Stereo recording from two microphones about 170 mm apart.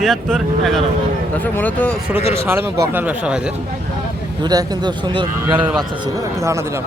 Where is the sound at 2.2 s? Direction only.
35° left (ahead or behind).